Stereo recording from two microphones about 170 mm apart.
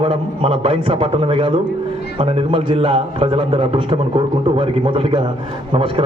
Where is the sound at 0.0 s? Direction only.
35° right (ahead or behind).